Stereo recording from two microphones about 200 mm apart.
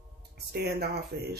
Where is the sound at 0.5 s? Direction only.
50° right (ahead or behind).